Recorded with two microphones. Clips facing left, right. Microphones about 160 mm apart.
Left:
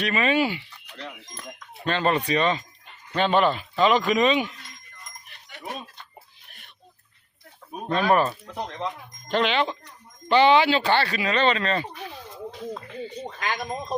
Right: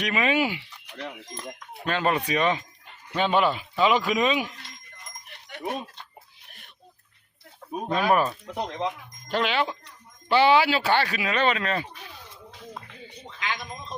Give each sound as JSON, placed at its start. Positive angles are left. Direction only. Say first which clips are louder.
{"t": 0.0, "sound": "speech", "louder": "left 2 dB", "side_deg": -10}
{"t": 7.9, "sound": "speech", "louder": "left 2 dB", "side_deg": -10}
{"t": 9.3, "sound": "speech", "louder": "left 2 dB", "side_deg": -5}
{"t": 13.2, "sound": "speech", "louder": "left 1 dB", "side_deg": 45}